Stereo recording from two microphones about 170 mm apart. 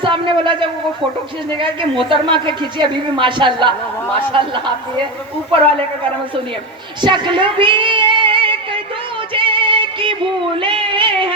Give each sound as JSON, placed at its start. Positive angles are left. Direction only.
{"t": 0.0, "sound": "a man's voice", "side_deg": -30}
{"t": 7.0, "sound": "child singing", "side_deg": -30}
{"t": 9.3, "sound": "music", "side_deg": -30}
{"t": 10.6, "sound": "a sound", "side_deg": -30}